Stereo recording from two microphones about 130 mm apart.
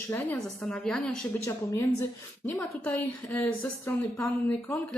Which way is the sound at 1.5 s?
20° left (ahead or behind).